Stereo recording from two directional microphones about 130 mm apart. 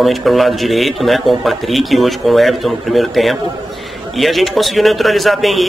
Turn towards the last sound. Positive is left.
turn(degrees=0)  # may be behind; listen again after turning